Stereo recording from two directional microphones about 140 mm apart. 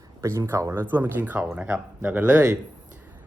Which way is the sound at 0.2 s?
20° right (ahead or behind).